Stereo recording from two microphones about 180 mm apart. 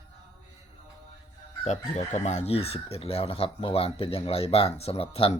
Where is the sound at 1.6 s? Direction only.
40° left (ahead or behind).